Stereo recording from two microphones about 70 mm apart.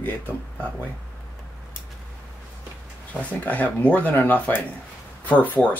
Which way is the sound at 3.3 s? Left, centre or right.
Left.